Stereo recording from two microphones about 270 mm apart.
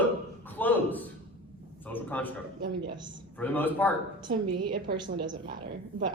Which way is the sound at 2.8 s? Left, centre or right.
Centre.